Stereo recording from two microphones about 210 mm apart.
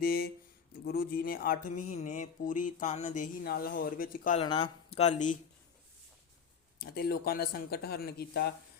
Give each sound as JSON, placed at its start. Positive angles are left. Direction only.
{"t": 0.0, "sound": "speech", "side_deg": 45}
{"t": 0.9, "sound": "a sound", "side_deg": 45}
{"t": 3.4, "sound": "speech", "side_deg": 45}
{"t": 4.4, "sound": "speech", "side_deg": 25}
{"t": 6.7, "sound": "speech", "side_deg": 45}